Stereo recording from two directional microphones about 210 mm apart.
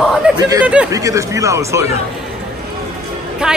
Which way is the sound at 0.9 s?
15° right (ahead or behind).